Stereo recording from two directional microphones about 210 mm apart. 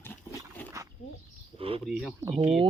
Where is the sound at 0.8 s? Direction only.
15° right (ahead or behind).